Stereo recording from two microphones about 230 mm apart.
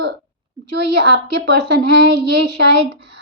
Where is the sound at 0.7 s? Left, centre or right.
Right.